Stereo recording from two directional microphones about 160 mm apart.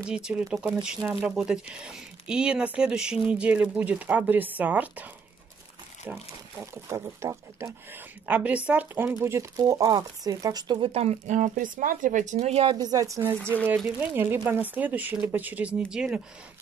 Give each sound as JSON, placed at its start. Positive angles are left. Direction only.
{"t": 0.0, "sound": "speech", "side_deg": -5}
{"t": 6.1, "sound": "speech", "side_deg": -10}
{"t": 12.7, "sound": "speech", "side_deg": -20}
{"t": 13.7, "sound": "speech", "side_deg": -10}